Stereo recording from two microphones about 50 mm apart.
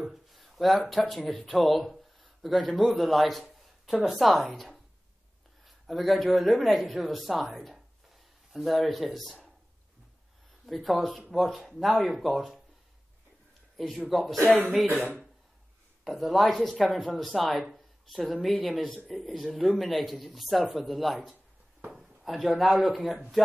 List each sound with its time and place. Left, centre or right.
0.0 s a man's voice: centre
10.7 s speech: centre
13.9 s speech: centre
16.0 s speech: centre